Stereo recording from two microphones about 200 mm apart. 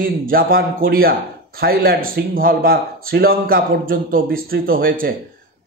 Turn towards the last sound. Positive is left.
turn(degrees=-45)  # may be behind; listen again after turning